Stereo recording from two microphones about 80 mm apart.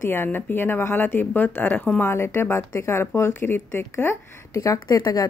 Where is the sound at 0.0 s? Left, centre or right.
Left.